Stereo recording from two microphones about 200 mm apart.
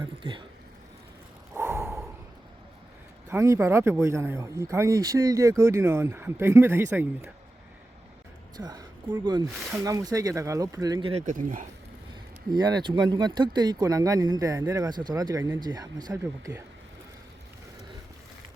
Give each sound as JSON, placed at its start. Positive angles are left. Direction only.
{"t": 0.0, "sound": "speech", "side_deg": -25}
{"t": 1.5, "sound": "a sound", "side_deg": -10}
{"t": 3.2, "sound": "speech", "side_deg": -15}
{"t": 8.5, "sound": "speech", "side_deg": -20}
{"t": 11.3, "sound": "speech", "side_deg": -40}
{"t": 12.5, "sound": "speech", "side_deg": -20}